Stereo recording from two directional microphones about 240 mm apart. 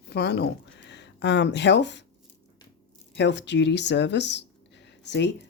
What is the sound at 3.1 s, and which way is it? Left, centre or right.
Speech, left.